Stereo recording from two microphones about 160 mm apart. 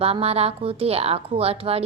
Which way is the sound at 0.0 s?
40° right (ahead or behind).